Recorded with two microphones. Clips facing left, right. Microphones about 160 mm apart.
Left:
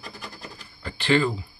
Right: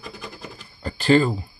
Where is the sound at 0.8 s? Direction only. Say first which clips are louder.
Right 5 dB; 40° right (ahead or behind).